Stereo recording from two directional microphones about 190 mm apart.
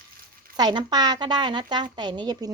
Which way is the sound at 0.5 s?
20° right (ahead or behind).